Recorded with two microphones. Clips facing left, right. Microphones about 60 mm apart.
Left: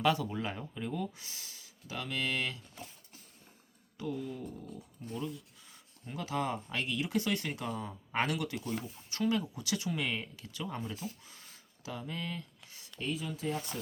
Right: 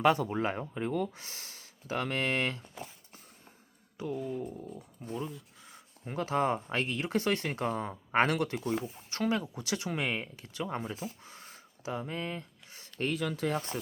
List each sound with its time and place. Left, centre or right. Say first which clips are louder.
0.0 s speech: right 4 dB; right
3.9 s speech: right 3 dB; right
6.1 s speech: right 5 dB; right
13.0 s speech: right 5 dB; right